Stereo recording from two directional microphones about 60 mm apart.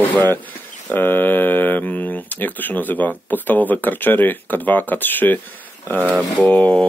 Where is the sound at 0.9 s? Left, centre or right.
Left.